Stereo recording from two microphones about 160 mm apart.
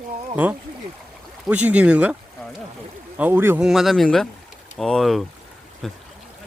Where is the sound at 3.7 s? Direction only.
Centre (ahead or behind).